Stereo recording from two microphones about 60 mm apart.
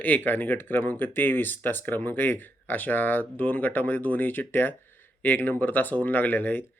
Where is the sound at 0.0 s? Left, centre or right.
Left.